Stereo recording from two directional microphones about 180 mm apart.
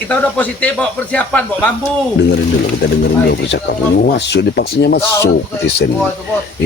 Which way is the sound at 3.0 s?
60° left (ahead or behind).